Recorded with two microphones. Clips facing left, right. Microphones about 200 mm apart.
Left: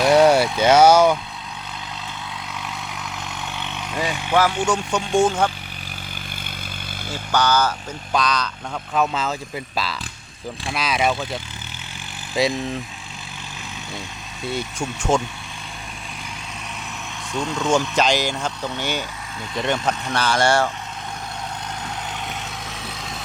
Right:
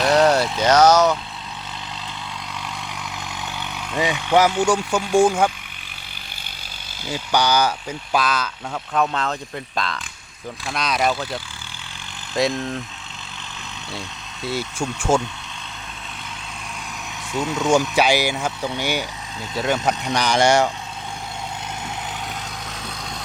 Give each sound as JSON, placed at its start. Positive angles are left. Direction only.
{"t": 0.0, "sound": "speech", "side_deg": 5}
{"t": 3.5, "sound": "vehicle", "side_deg": 0}
{"t": 4.0, "sound": "speech", "side_deg": -15}
{"t": 7.1, "sound": "speech", "side_deg": -15}
{"t": 12.3, "sound": "speech", "side_deg": 0}
{"t": 14.4, "sound": "speech", "side_deg": -5}
{"t": 17.3, "sound": "speech", "side_deg": -5}
{"t": 19.9, "sound": "speech", "side_deg": -15}